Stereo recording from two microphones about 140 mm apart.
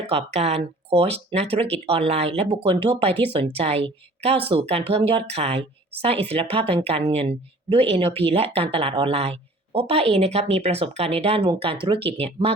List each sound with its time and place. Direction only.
0.1 s speech: 50° right (ahead or behind)
3.2 s speech: 10° left (ahead or behind)
3.6 s speech: 45° right (ahead or behind)